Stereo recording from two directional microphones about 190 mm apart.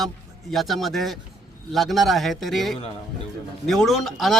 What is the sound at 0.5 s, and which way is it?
A man's voice, centre (ahead or behind).